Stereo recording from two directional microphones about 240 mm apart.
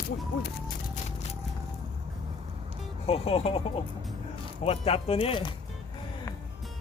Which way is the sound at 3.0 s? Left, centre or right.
Left.